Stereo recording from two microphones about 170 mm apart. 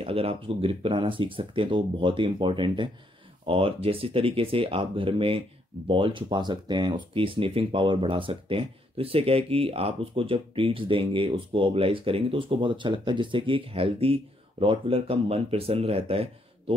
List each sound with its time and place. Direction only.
0.0 s speech: 35° right (ahead or behind)